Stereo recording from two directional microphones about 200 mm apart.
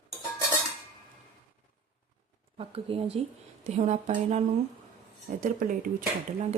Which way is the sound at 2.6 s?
30° right (ahead or behind).